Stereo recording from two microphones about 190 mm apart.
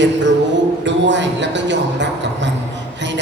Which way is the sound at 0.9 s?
70° right (ahead or behind).